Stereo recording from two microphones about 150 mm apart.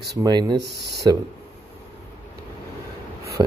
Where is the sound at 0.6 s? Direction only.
90° right.